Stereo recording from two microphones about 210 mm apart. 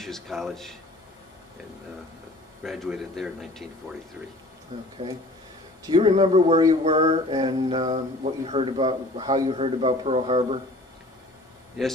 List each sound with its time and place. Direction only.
0.0 s speech: centre (ahead or behind)
2.6 s speech: centre (ahead or behind)
5.9 s speech: 20° right (ahead or behind)